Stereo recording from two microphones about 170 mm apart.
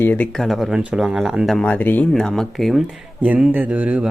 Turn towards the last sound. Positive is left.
turn(degrees=-10)  # may be behind; listen again after turning